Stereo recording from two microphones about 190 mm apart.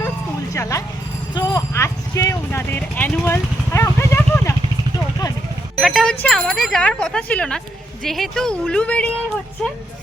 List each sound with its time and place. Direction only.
0.5 s a sound: 15° left (ahead or behind)
1.4 s vehicle: 20° left (ahead or behind)
5.7 s speech: centre (ahead or behind)